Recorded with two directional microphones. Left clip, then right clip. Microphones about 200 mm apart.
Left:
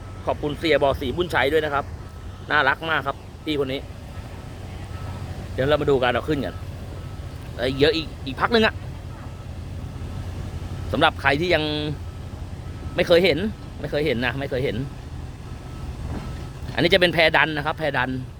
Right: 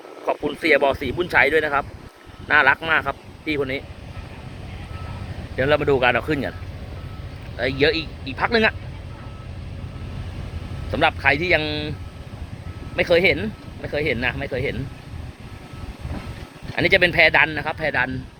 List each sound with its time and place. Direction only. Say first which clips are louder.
0.3 s speech: right 3 dB; centre (ahead or behind)
5.5 s speech: right 1 dB; centre (ahead or behind)
7.6 s speech: even; 15° left (ahead or behind)
8.0 s speech: right 1 dB; 10° right (ahead or behind)
8.4 s speech: right 1 dB; 15° left (ahead or behind)
10.9 s speech: right 1 dB; 20° left (ahead or behind)
13.0 s speech: even; 20° left (ahead or behind)
16.7 s speech: right 1 dB; 20° left (ahead or behind)